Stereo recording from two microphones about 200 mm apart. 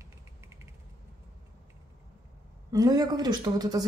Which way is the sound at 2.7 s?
20° right (ahead or behind).